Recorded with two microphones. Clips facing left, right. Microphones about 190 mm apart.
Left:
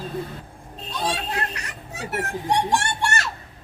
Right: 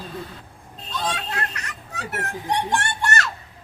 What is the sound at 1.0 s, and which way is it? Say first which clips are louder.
Music: left 2 dB; 30° left (ahead or behind).